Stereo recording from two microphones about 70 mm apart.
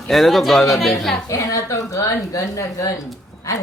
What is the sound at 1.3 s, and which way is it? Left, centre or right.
Speech, left.